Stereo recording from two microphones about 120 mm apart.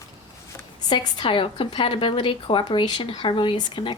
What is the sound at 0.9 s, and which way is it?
A woman's voice, 40° left (ahead or behind).